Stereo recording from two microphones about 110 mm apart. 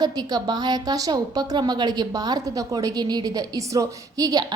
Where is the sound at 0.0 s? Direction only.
35° right (ahead or behind).